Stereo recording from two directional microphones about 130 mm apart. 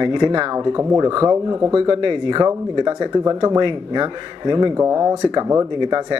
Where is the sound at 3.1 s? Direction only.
30° right (ahead or behind).